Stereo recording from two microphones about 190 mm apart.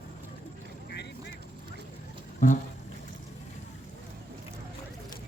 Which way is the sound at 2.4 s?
45° left (ahead or behind).